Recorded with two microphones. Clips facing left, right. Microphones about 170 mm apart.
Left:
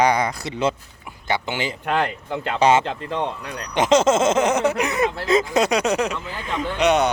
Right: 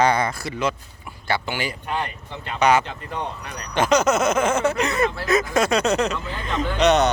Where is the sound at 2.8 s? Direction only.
90° left.